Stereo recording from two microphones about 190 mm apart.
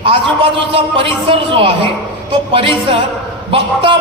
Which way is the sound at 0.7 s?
25° right (ahead or behind).